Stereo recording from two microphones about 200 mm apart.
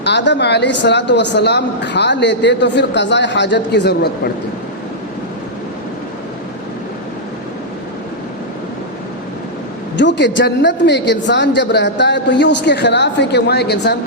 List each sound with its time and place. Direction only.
0.0 s a woman's voice: 60° left (ahead or behind)
10.0 s a woman's voice: 60° left (ahead or behind)